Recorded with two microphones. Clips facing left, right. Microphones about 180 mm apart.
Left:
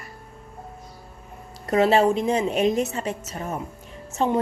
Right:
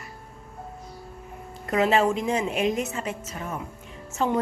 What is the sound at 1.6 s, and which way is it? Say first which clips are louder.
A woman's voice: left 3 dB; 35° left (ahead or behind).